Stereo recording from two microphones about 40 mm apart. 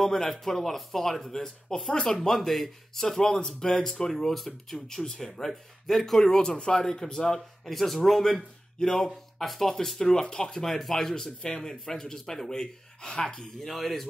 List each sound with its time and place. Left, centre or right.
0.0 s speech: centre
2.1 s speech: centre
6.2 s speech: centre
13.7 s speech: centre